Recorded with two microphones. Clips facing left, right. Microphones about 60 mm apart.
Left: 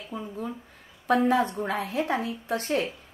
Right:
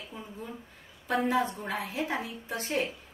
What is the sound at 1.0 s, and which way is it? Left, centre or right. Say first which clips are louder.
A woman's voice: left 5 dB; left.